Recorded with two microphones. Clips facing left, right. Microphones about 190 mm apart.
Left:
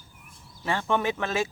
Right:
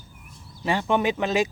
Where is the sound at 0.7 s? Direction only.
15° right (ahead or behind).